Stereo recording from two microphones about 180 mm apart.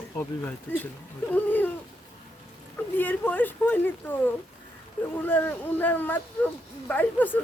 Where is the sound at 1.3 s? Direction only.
10° left (ahead or behind).